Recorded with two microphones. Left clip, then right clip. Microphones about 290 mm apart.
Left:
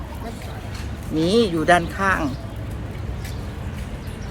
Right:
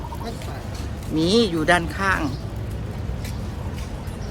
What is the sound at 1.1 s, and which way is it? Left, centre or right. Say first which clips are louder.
Speech: left 1 dB; centre.